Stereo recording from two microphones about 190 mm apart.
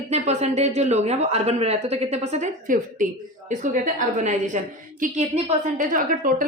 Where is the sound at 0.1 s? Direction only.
35° right (ahead or behind).